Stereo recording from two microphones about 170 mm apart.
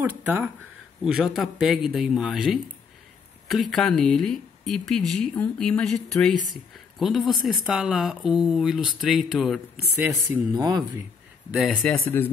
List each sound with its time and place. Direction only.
0.0 s speech: 15° right (ahead or behind)
1.0 s a woman's voice: centre (ahead or behind)
10.5 s speech: 25° right (ahead or behind)
11.5 s speech: centre (ahead or behind)